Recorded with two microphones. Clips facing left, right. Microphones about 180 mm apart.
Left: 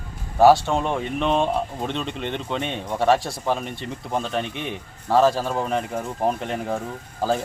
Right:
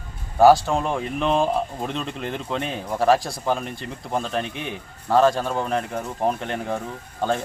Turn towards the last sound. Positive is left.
turn(degrees=0)  # may be behind; listen again after turning